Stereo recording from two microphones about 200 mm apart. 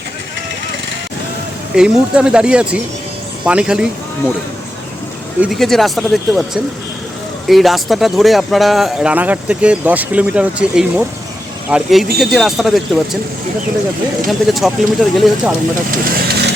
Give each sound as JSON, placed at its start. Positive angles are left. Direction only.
{"t": 1.7, "sound": "speech", "side_deg": -5}
{"t": 5.4, "sound": "speech", "side_deg": 0}
{"t": 14.3, "sound": "speech", "side_deg": 0}
{"t": 15.9, "sound": "vehicle", "side_deg": -45}